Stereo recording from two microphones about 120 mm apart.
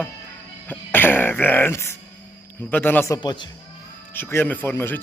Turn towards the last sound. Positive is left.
turn(degrees=20)  # may be behind; listen again after turning